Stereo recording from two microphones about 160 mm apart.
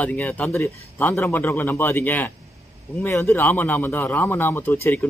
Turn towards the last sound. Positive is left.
turn(degrees=10)  # may be behind; listen again after turning